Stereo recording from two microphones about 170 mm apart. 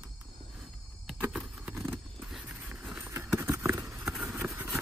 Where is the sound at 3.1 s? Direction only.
15° right (ahead or behind).